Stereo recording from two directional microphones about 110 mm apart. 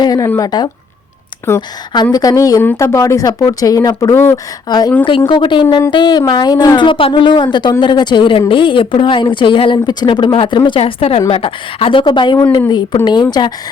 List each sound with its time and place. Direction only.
0.0 s speech: 35° left (ahead or behind)
1.4 s speech: 20° left (ahead or behind)
2.1 s speech: 35° left (ahead or behind)
2.6 s speech: 20° left (ahead or behind)
4.7 s speech: 40° left (ahead or behind)
5.0 s a woman's voice: 50° left (ahead or behind)
10.8 s a woman's voice: 65° left (ahead or behind); by 13.5 s 35° left (ahead or behind)